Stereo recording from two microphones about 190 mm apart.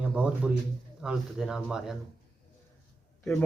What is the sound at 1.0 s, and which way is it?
Speech, 5° right (ahead or behind).